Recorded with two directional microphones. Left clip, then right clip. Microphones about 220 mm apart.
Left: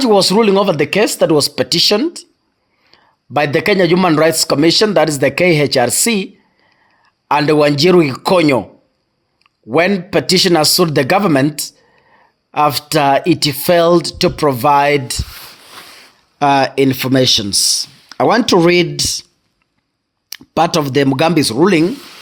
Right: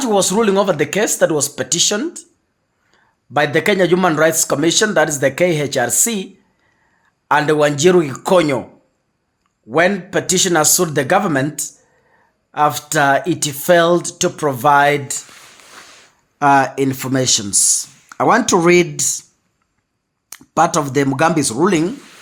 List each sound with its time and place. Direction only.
0.0 s a man's voice: 25° left (ahead or behind)
20.3 s a man's voice: 20° left (ahead or behind)